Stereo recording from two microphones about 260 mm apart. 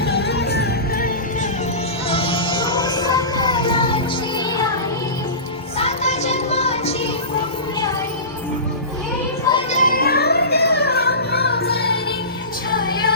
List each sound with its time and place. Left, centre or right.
0.0 s music: left
2.0 s music: left
5.8 s child singing: left
9.6 s music: left